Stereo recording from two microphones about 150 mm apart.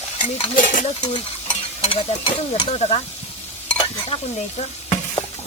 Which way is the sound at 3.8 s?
45° left (ahead or behind).